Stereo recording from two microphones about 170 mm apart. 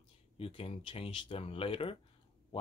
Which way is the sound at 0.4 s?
35° left (ahead or behind).